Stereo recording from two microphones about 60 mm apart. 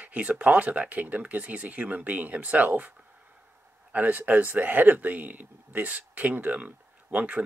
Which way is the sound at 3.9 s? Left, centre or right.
Right.